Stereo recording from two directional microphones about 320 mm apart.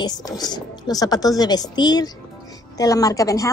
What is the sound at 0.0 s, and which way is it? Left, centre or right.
A woman's voice, centre.